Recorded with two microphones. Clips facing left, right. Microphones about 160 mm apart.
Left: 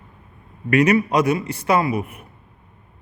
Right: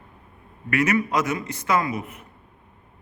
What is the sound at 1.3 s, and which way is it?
Speech, 30° left (ahead or behind).